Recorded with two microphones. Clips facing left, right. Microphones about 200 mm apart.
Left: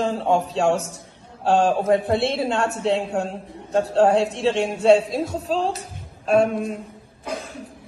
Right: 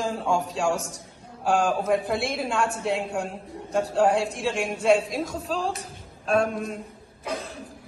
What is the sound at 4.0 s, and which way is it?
A man's voice, 30° left (ahead or behind).